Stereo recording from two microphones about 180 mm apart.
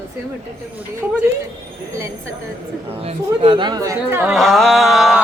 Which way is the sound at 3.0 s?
30° right (ahead or behind).